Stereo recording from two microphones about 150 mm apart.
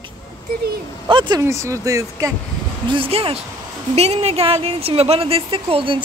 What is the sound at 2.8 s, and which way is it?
Speech, 35° right (ahead or behind).